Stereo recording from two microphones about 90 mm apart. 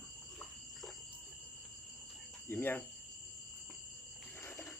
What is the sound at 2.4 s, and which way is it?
Cricket, 25° left (ahead or behind).